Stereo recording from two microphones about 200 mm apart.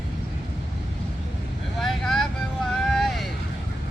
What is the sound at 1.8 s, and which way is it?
Vehicle, centre (ahead or behind).